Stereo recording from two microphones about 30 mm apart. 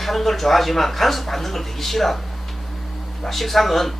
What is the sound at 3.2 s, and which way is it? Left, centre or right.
Speech, centre.